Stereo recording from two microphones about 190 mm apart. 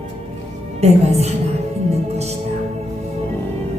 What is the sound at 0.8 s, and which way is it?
Speech, 35° right (ahead or behind).